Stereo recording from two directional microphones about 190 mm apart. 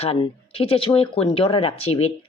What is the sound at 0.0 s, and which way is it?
Speech, 30° left (ahead or behind).